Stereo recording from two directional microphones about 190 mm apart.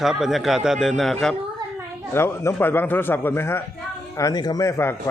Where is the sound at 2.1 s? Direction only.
10° left (ahead or behind).